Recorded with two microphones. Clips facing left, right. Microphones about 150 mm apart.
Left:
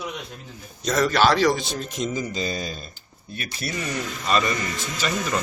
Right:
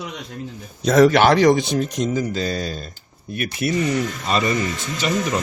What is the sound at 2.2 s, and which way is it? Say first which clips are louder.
Speech: right 4 dB; 10° left (ahead or behind).